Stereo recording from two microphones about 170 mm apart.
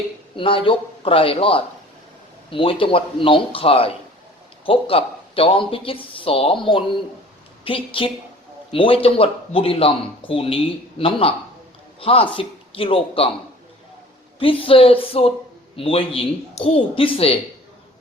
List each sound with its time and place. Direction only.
0.3 s a man's voice: 30° left (ahead or behind)
14.3 s speech: 30° left (ahead or behind)